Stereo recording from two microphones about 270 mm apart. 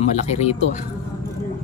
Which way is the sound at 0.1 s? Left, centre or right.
Left.